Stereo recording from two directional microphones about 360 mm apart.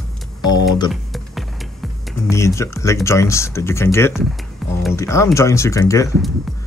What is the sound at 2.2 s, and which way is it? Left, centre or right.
Speech, centre.